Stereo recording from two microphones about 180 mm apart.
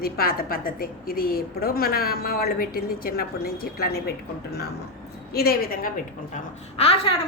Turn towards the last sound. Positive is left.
turn(degrees=35)  # may be behind; listen again after turning